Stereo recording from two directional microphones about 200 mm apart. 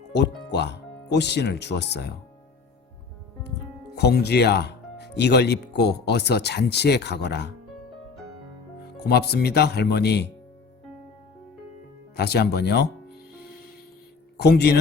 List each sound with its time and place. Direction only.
0.1 s speech: 60° left (ahead or behind)
3.9 s speech: 55° left (ahead or behind)
9.0 s speech: 55° left (ahead or behind)
12.1 s speech: 55° left (ahead or behind)
14.3 s speech: 55° left (ahead or behind)